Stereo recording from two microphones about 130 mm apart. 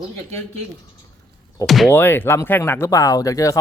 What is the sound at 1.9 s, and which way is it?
Speech, 15° left (ahead or behind).